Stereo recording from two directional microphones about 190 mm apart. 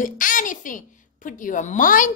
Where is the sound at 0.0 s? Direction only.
45° left (ahead or behind).